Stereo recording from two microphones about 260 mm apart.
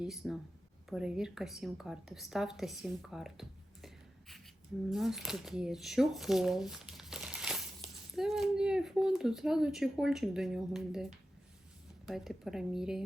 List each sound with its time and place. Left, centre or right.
0.0 s a woman's voice: centre